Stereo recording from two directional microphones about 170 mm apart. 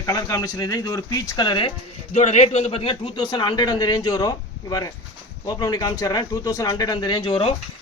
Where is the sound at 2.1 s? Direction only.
40° left (ahead or behind); by 4.3 s 20° left (ahead or behind).